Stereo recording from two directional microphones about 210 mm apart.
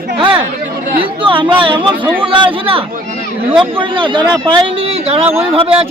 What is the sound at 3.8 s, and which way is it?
Speech, 25° right (ahead or behind).